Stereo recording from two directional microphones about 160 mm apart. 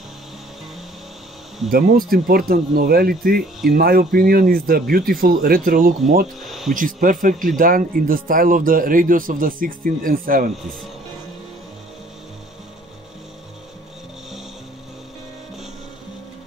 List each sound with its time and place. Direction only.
1.7 s speech: 65° right (ahead or behind)
6.4 s a sound: centre (ahead or behind)
6.7 s speech: 55° right (ahead or behind)